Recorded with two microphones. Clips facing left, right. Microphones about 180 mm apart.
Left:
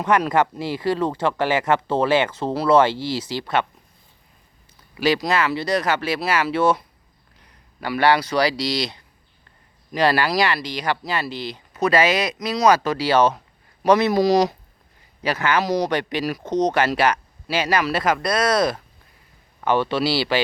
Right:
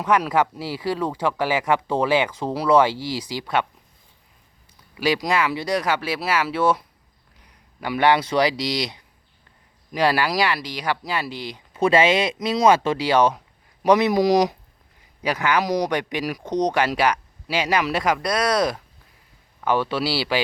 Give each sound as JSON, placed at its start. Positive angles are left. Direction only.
{"t": 0.0, "sound": "speech", "side_deg": -10}
{"t": 4.9, "sound": "speech", "side_deg": -10}
{"t": 11.7, "sound": "speech", "side_deg": -25}